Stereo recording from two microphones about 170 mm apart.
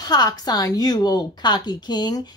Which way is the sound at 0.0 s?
25° left (ahead or behind).